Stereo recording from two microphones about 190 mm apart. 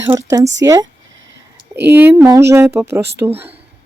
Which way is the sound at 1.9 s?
10° right (ahead or behind).